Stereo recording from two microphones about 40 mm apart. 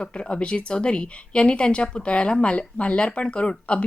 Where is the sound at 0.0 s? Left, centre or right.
Left.